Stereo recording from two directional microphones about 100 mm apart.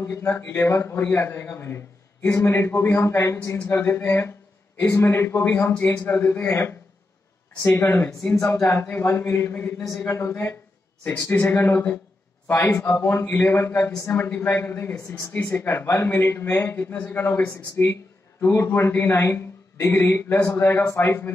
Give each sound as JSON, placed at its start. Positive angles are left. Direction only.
{"t": 0.0, "sound": "a man's voice", "side_deg": 25}
{"t": 8.1, "sound": "speech", "side_deg": 10}
{"t": 8.6, "sound": "a man's voice", "side_deg": 20}
{"t": 12.9, "sound": "a man's voice", "side_deg": 25}
{"t": 15.0, "sound": "speech", "side_deg": 35}
{"t": 15.3, "sound": "a man's voice", "side_deg": 20}